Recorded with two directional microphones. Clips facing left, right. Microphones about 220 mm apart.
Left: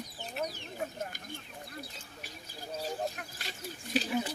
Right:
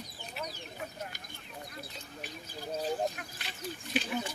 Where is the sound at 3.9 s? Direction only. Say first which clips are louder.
Left 2 dB; 40° left (ahead or behind).